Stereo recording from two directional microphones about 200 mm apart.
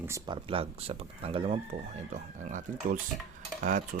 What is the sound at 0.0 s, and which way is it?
Speech, 20° right (ahead or behind).